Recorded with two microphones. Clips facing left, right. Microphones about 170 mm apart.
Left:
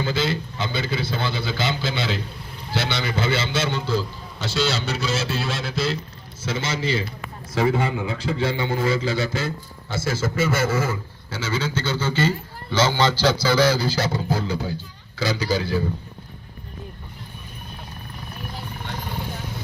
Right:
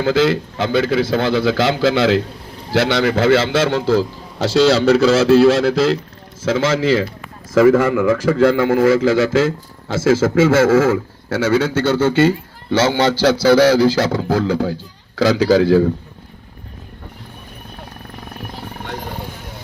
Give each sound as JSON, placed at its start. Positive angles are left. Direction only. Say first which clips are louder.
{"t": 0.0, "sound": "a man's voice", "louder": "right 9 dB", "side_deg": -90}